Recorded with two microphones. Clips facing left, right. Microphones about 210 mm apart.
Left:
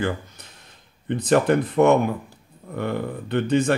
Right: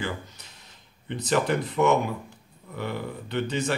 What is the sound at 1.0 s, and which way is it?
Speech, 55° left (ahead or behind).